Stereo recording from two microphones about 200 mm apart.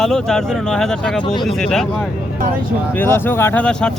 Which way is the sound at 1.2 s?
25° left (ahead or behind).